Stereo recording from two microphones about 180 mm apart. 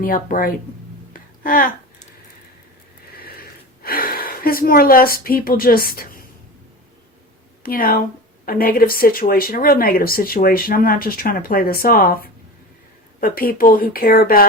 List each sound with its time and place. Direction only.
0.0 s speech: 50° left (ahead or behind)
1.1 s a sound: 50° left (ahead or behind)
3.8 s speech: 55° left (ahead or behind)
7.6 s speech: 55° left (ahead or behind)